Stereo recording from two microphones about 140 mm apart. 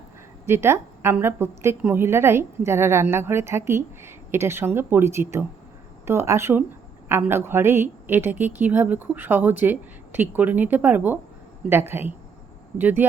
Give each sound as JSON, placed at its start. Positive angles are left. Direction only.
{"t": 0.4, "sound": "a woman's voice", "side_deg": -20}